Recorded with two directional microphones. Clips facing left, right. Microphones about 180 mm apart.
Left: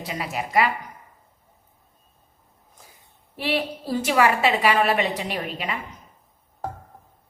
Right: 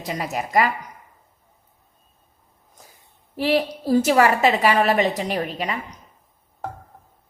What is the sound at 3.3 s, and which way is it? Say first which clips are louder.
A woman's voice: right 5 dB; 40° right (ahead or behind).